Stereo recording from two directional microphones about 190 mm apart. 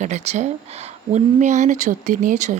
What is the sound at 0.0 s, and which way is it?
A woman's voice, 35° right (ahead or behind).